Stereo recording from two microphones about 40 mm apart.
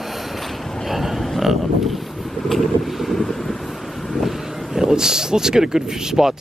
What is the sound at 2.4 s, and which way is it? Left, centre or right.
Wind, centre.